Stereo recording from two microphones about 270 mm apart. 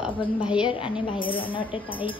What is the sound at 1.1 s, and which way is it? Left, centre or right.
Speech, centre.